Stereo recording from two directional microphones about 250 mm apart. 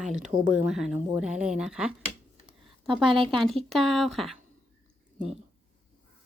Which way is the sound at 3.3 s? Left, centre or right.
Centre.